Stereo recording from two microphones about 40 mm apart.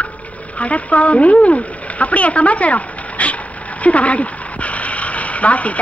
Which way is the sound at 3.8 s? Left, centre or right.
Left.